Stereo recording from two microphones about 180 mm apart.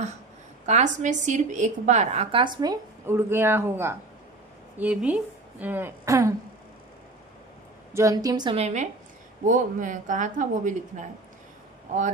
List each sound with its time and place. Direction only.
0.6 s a woman's voice: 40° right (ahead or behind); by 6.3 s 15° right (ahead or behind)
7.9 s a woman's voice: 20° right (ahead or behind); by 11.0 s 45° right (ahead or behind)